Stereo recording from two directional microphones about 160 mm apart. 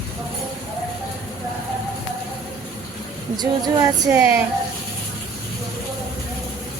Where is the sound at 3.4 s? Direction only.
20° right (ahead or behind).